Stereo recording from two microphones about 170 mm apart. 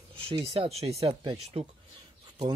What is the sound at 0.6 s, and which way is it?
Speech, 35° right (ahead or behind).